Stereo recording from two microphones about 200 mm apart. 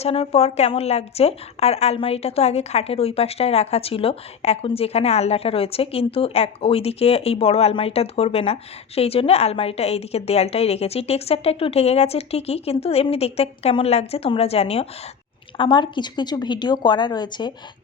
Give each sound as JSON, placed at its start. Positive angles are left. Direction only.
{"t": 0.0, "sound": "a woman's voice", "side_deg": 30}